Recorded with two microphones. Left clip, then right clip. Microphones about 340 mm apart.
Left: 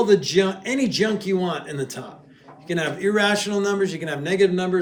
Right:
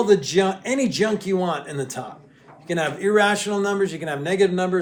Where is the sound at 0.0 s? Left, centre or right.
Centre.